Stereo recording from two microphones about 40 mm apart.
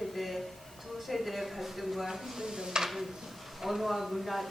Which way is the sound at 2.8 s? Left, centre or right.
Centre.